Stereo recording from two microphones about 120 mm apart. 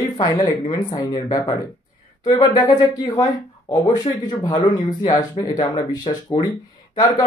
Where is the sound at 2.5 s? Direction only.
35° left (ahead or behind).